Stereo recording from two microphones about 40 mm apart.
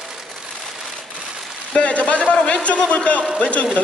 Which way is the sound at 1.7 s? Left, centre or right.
Left.